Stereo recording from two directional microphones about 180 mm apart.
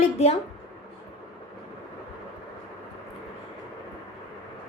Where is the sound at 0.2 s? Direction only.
35° left (ahead or behind).